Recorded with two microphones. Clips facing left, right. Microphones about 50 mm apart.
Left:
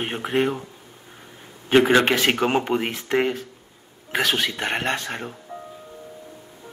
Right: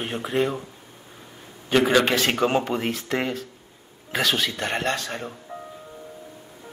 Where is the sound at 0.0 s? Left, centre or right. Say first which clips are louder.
Left 2 dB; left.